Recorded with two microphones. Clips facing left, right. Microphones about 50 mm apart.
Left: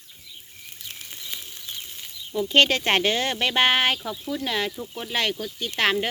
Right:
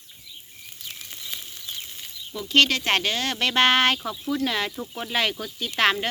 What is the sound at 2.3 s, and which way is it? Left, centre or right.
Speech, left.